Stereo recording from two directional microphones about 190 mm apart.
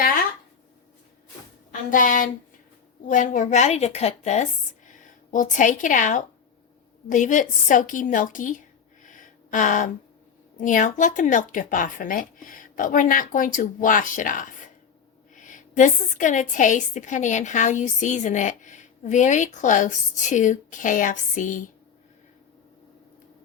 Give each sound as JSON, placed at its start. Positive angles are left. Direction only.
{"t": 1.9, "sound": "a woman's voice", "side_deg": 45}
{"t": 9.0, "sound": "a sound", "side_deg": 45}
{"t": 10.6, "sound": "a woman's voice", "side_deg": 45}